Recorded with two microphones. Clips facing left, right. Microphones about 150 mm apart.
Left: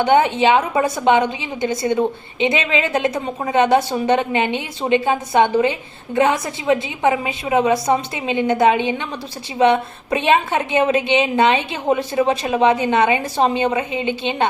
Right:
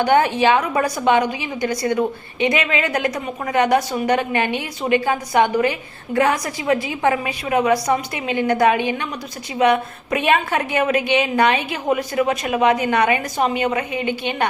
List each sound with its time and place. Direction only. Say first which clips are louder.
0.0 s a woman's voice: left 1 dB; 20° left (ahead or behind)